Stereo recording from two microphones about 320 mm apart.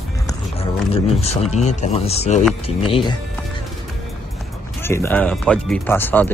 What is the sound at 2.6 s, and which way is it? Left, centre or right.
Speech, centre.